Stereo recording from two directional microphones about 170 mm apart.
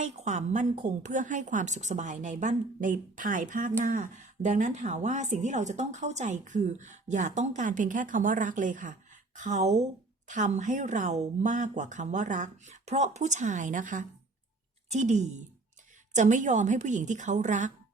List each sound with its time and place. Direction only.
0.0 s a woman's voice: 45° right (ahead or behind)